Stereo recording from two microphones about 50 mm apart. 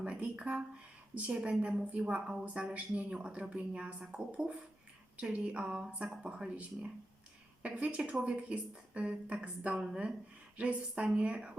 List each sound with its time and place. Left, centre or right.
0.0 s a woman's voice: right